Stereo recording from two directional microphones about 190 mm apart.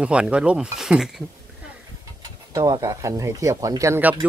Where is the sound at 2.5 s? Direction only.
20° right (ahead or behind).